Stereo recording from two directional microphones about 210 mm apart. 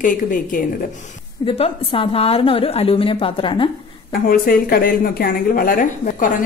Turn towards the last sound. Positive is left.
turn(degrees=40)  # may be behind; listen again after turning